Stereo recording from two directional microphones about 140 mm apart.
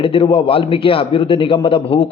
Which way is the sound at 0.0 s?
40° left (ahead or behind).